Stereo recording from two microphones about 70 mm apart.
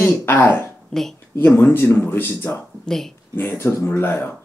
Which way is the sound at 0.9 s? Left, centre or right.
Centre.